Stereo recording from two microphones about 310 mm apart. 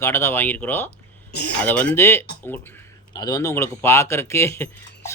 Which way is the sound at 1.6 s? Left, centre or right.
Centre.